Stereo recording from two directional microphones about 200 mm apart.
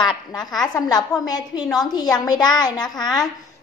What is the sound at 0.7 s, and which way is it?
A woman's voice, 20° left (ahead or behind).